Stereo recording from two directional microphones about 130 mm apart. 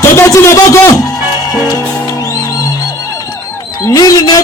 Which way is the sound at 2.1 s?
25° left (ahead or behind).